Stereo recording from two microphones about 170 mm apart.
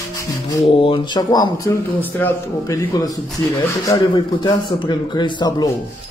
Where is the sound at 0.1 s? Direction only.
20° left (ahead or behind).